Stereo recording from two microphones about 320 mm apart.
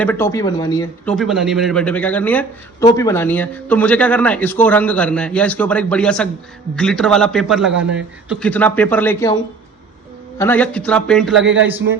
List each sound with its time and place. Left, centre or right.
0.0 s speech: centre
1.1 s a man's voice: centre